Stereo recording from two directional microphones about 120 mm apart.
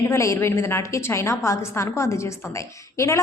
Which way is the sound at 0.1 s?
25° left (ahead or behind).